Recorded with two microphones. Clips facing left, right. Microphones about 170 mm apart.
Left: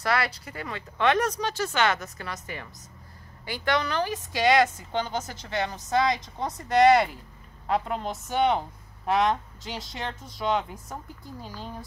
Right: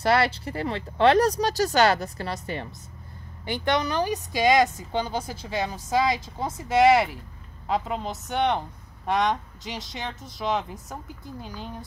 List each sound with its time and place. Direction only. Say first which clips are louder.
0.0 s speech: right 5 dB; 30° right (ahead or behind)
3.4 s a woman's voice: right 2 dB; 20° right (ahead or behind); by 11.8 s centre (ahead or behind)